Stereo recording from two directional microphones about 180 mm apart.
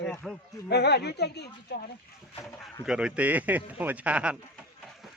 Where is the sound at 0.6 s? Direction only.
65° left (ahead or behind).